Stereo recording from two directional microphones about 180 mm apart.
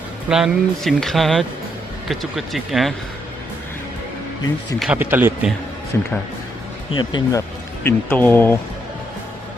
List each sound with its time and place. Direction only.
0.3 s speech: 5° right (ahead or behind)
4.8 s speech: 10° right (ahead or behind)
5.9 s speech: 15° left (ahead or behind)
6.9 s speech: 25° left (ahead or behind)
7.9 s speech: 10° left (ahead or behind)